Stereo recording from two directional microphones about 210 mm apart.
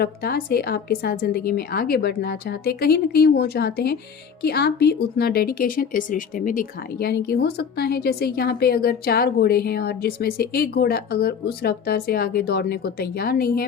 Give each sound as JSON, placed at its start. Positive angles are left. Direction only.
{"t": 0.0, "sound": "speech", "side_deg": 50}